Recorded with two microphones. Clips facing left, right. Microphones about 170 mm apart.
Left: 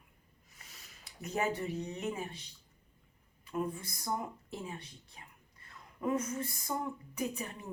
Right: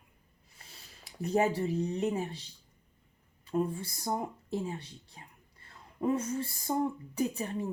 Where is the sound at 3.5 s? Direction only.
30° right (ahead or behind).